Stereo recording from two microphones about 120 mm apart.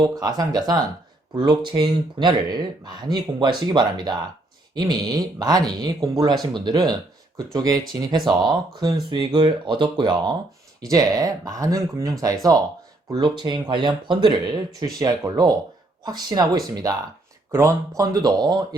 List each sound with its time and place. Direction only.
0.0 s speech: 30° right (ahead or behind)